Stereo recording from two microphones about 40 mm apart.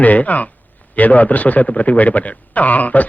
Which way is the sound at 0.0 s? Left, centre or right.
Left.